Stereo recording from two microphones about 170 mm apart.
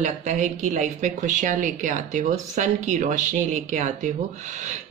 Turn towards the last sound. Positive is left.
turn(degrees=-45)  # may be behind; listen again after turning